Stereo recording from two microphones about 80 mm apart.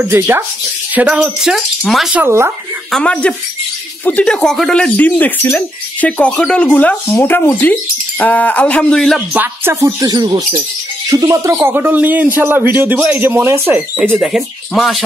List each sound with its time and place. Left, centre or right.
0.0 s speech: right
0.9 s speech: centre
2.2 s speech: right
3.0 s speech: centre
4.9 s speech: left
9.4 s speech: right
9.9 s speech: right
11.1 s speech: right
14.1 s speech: centre